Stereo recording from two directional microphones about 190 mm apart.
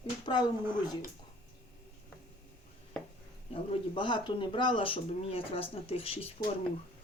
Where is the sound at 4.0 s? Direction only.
25° left (ahead or behind).